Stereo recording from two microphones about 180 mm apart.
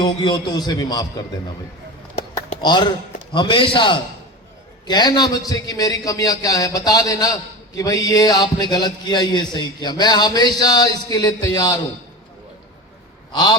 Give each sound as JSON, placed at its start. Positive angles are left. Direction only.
{"t": 0.0, "sound": "a man's voice", "side_deg": 25}
{"t": 2.6, "sound": "a man's voice", "side_deg": 25}
{"t": 13.3, "sound": "a man's voice", "side_deg": 25}